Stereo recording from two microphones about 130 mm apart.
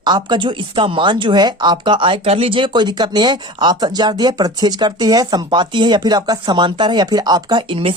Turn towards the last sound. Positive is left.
turn(degrees=-40)  # may be behind; listen again after turning